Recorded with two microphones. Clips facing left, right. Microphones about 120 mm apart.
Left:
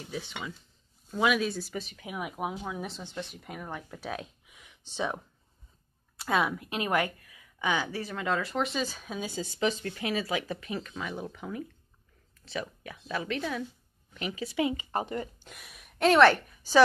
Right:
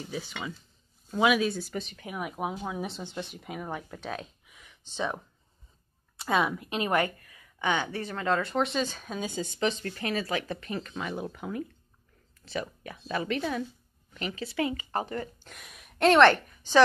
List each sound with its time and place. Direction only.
0.0 s speech: centre (ahead or behind)
3.9 s a sound: 10° left (ahead or behind)
6.1 s speech: centre (ahead or behind)
14.1 s speech: 10° left (ahead or behind)
15.5 s a woman's voice: centre (ahead or behind)